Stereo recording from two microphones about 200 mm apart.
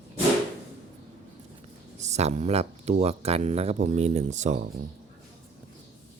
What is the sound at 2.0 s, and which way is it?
Speech, 35° right (ahead or behind).